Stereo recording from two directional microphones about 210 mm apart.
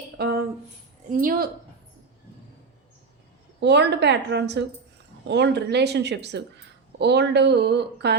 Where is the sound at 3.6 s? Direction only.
55° right (ahead or behind).